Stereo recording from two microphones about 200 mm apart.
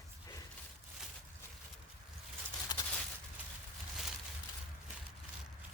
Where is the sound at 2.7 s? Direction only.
20° left (ahead or behind).